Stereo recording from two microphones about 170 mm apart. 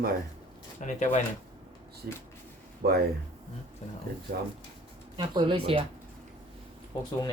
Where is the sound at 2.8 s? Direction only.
65° right (ahead or behind).